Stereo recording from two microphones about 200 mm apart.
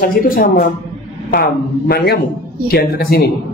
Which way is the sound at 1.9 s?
50° left (ahead or behind).